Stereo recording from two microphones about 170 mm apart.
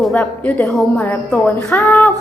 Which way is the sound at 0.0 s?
5° left (ahead or behind).